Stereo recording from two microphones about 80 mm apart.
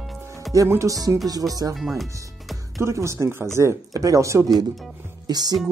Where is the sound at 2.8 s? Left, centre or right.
Right.